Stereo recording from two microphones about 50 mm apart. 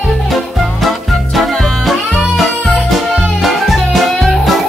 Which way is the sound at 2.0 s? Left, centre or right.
Centre.